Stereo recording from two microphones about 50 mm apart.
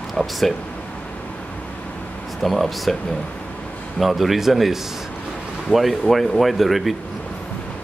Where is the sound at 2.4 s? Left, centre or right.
Centre.